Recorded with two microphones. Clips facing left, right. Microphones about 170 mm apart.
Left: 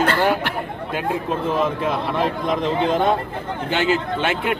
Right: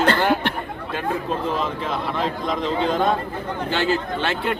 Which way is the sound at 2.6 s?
20° left (ahead or behind).